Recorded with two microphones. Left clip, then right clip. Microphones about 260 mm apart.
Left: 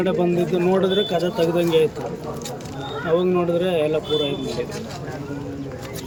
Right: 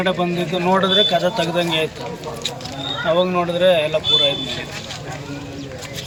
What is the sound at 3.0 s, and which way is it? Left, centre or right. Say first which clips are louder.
Speech: right 2 dB; centre.